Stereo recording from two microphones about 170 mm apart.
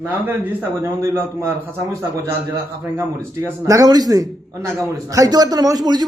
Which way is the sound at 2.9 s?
15° right (ahead or behind).